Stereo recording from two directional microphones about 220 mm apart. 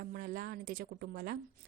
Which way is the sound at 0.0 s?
40° right (ahead or behind).